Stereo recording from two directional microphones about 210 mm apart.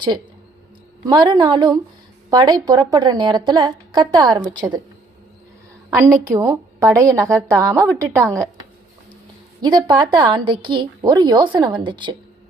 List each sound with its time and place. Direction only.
1.1 s a woman's voice: 20° right (ahead or behind)
5.9 s a woman's voice: 15° right (ahead or behind)
9.6 s a woman's voice: 20° right (ahead or behind)